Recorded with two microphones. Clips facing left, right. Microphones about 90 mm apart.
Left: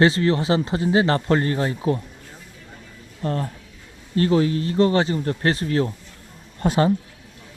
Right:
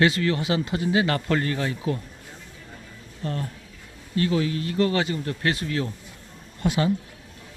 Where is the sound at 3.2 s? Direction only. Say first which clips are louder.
Left 5 dB; 35° left (ahead or behind).